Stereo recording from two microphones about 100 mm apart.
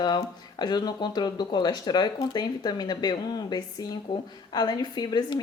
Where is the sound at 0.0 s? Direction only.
45° left (ahead or behind).